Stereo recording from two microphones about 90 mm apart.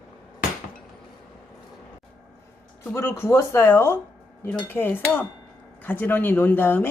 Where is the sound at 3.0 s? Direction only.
30° left (ahead or behind).